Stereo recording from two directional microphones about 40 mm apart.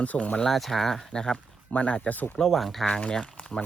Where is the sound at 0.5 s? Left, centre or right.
Centre.